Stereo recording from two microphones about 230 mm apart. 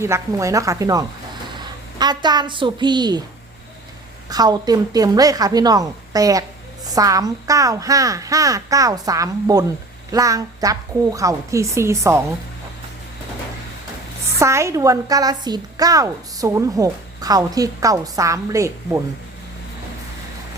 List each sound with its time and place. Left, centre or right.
0.0 s a woman's voice: centre
4.3 s a woman's voice: centre
14.3 s a woman's voice: centre